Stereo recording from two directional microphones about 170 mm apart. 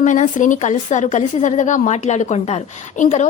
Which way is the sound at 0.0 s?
45° left (ahead or behind).